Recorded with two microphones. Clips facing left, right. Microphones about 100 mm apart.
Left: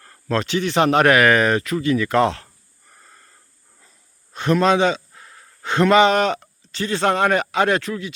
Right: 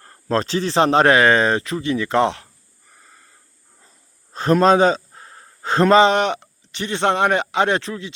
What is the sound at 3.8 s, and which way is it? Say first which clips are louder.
Speech: right 2 dB; 35° right (ahead or behind).